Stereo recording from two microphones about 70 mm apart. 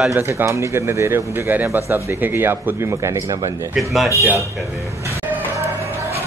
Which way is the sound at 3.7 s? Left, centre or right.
Centre.